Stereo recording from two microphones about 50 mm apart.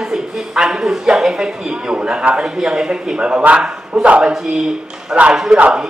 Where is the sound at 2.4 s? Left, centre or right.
Centre.